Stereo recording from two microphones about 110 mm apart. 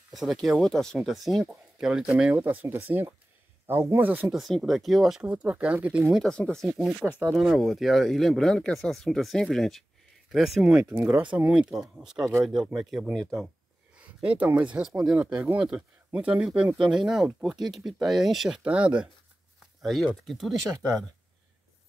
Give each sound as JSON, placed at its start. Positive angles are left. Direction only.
{"t": 0.1, "sound": "speech", "side_deg": 0}
{"t": 4.3, "sound": "speech", "side_deg": 0}
{"t": 6.2, "sound": "speech", "side_deg": 5}
{"t": 10.8, "sound": "speech", "side_deg": -20}
{"t": 13.9, "sound": "speech", "side_deg": -10}
{"t": 19.8, "sound": "speech", "side_deg": 0}